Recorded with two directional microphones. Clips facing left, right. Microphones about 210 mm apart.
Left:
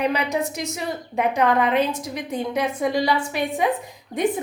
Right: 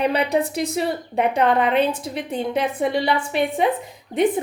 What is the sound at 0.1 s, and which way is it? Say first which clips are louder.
A woman's voice: right 3 dB; 30° right (ahead or behind).